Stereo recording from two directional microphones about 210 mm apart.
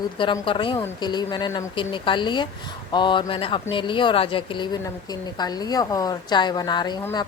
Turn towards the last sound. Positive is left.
turn(degrees=20)  # may be behind; listen again after turning